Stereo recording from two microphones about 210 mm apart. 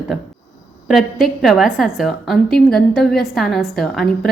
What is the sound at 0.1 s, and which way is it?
A woman's voice, centre (ahead or behind).